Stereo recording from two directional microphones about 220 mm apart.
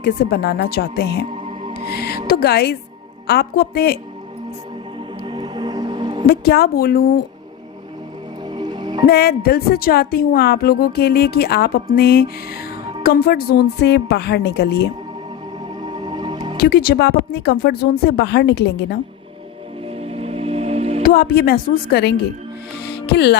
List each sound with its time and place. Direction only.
0.0 s a woman's voice: 45° left (ahead or behind)
5.2 s music: 20° right (ahead or behind)
6.2 s a woman's voice: 45° left (ahead or behind)
8.4 s music: 20° right (ahead or behind)
9.0 s a woman's voice: 45° left (ahead or behind)
15.8 s music: 20° right (ahead or behind)
16.6 s a woman's voice: 45° left (ahead or behind)
20.0 s music: 25° right (ahead or behind)
21.0 s a woman's voice: 45° left (ahead or behind)
22.9 s music: 50° left (ahead or behind)